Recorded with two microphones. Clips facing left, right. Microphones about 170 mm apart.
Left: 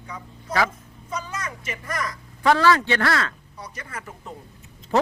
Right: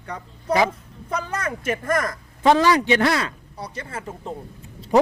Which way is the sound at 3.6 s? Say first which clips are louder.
Right 6 dB; 30° right (ahead or behind).